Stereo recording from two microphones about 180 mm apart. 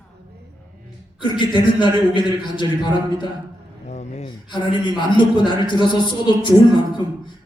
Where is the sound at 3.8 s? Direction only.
40° left (ahead or behind).